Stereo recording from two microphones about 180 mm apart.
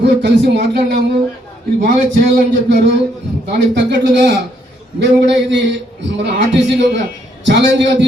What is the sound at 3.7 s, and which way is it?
A man's voice, 70° right (ahead or behind).